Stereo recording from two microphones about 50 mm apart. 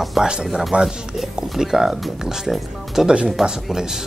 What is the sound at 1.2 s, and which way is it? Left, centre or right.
Speech, centre.